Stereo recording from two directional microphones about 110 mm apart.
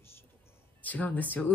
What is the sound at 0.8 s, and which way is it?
Speech, 15° left (ahead or behind).